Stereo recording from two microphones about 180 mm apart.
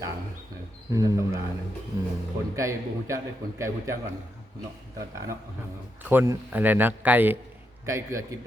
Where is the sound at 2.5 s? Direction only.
15° right (ahead or behind).